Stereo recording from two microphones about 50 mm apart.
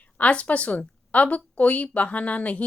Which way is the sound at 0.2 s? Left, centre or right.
Left.